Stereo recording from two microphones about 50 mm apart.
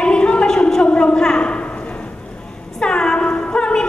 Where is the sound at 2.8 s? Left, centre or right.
Centre.